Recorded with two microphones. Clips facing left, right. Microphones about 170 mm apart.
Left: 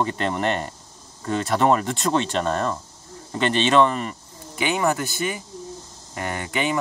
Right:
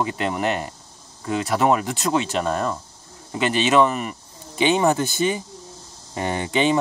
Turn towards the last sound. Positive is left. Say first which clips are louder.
# right 5 dB
turn(degrees=-25)  # may be behind; listen again after turning